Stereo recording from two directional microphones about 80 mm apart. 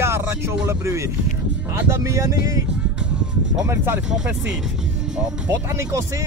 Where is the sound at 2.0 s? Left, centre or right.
Right.